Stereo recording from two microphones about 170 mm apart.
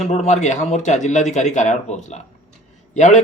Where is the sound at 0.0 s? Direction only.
40° left (ahead or behind).